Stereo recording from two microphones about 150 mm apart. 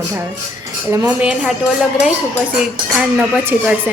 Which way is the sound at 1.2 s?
5° right (ahead or behind).